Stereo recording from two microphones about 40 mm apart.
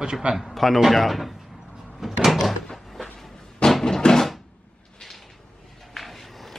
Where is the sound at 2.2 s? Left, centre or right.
Centre.